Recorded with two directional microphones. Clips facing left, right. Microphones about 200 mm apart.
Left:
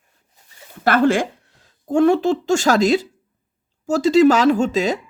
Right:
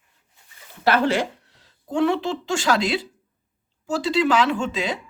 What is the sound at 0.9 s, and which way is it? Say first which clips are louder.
Speech: left 4 dB; 50° left (ahead or behind).